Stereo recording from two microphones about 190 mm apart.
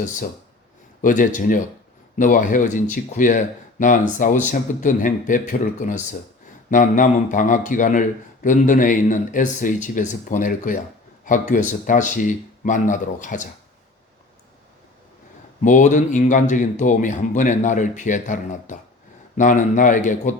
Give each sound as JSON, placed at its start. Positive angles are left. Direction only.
{"t": 1.0, "sound": "speech", "side_deg": 45}
{"t": 15.6, "sound": "speech", "side_deg": 40}